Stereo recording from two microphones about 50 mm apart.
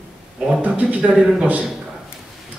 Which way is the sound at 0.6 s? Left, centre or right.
Right.